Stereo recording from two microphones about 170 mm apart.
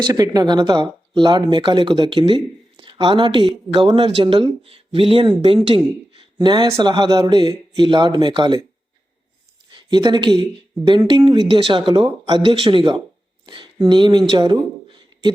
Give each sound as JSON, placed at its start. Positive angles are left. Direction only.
{"t": 0.0, "sound": "speech", "side_deg": -20}
{"t": 9.9, "sound": "speech", "side_deg": -25}
{"t": 13.4, "sound": "a sound", "side_deg": -30}